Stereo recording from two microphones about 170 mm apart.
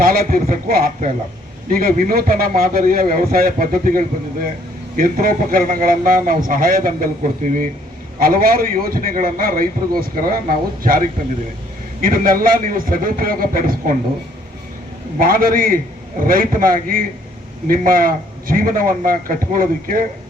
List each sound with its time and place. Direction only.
0.0 s a man's voice: 55° right (ahead or behind)
12.0 s a man's voice: 55° right (ahead or behind)
15.2 s a man's voice: 55° right (ahead or behind)